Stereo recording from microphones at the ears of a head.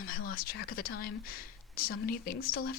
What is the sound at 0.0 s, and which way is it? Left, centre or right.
Speech, left.